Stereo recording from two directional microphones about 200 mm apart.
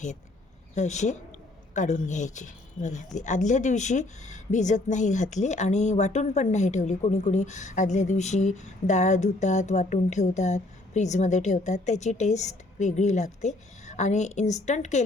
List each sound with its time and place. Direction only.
0.8 s speech: 35° left (ahead or behind)